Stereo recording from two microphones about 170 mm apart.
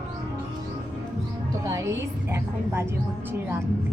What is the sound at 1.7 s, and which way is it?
Music, 15° right (ahead or behind).